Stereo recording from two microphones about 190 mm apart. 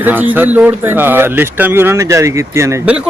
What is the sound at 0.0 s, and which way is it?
Speech, 10° right (ahead or behind).